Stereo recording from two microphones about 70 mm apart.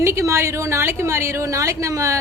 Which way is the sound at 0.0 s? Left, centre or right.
Right.